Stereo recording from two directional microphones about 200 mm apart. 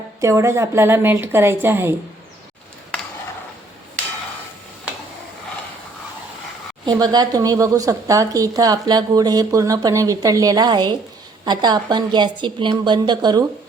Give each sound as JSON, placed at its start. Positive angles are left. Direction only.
{"t": 0.2, "sound": "speech", "side_deg": -15}
{"t": 6.8, "sound": "a woman's voice", "side_deg": -20}